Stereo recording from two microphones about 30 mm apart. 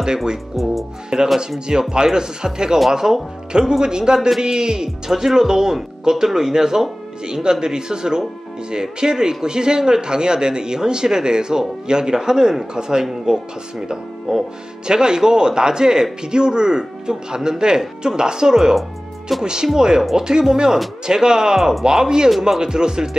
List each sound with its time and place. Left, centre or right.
0.0 s speech: right
4.8 s speech: centre
7.2 s speech: right